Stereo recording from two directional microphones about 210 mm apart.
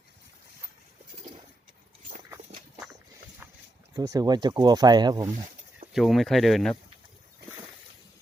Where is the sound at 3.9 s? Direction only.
15° right (ahead or behind).